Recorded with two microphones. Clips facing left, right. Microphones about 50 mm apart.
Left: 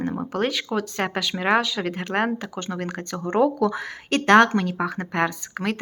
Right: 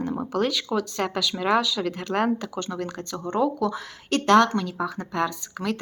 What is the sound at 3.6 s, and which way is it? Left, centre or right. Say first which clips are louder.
Speech: left 3 dB; left.